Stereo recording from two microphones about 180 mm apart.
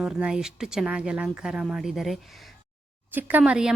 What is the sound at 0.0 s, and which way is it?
A woman's voice, 5° right (ahead or behind).